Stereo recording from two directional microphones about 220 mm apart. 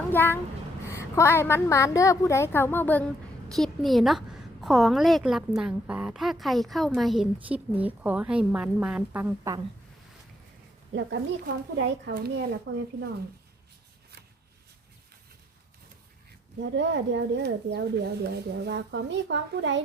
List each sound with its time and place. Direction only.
0.1 s a child's voice: 10° left (ahead or behind); by 9.6 s 10° right (ahead or behind)
10.9 s speech: 55° right (ahead or behind)
16.7 s speech: 55° right (ahead or behind)